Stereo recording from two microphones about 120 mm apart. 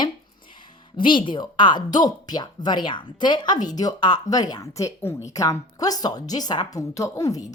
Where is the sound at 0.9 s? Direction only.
40° left (ahead or behind).